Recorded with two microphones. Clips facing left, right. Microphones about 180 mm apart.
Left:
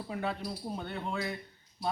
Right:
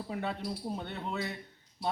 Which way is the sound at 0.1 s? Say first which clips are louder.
Left 1 dB; centre (ahead or behind).